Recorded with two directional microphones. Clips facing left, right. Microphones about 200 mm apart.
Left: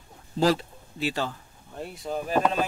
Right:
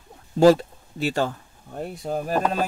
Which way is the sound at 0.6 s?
45° right (ahead or behind).